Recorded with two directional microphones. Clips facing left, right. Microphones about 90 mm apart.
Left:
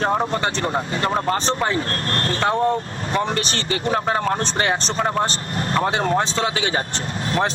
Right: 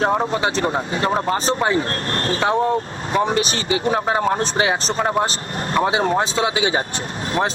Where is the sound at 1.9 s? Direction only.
20° right (ahead or behind).